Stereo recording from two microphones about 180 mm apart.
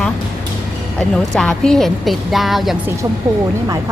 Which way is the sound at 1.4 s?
5° left (ahead or behind).